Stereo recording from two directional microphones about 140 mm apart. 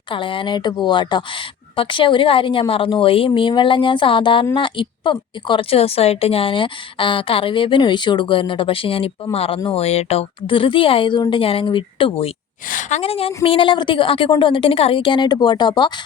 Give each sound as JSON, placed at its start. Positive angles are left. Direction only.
{"t": 0.1, "sound": "a woman's voice", "side_deg": 35}
{"t": 12.6, "sound": "a woman's voice", "side_deg": 70}
{"t": 13.0, "sound": "a woman's voice", "side_deg": 45}